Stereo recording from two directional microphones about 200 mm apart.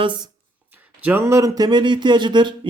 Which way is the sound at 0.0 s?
25° right (ahead or behind).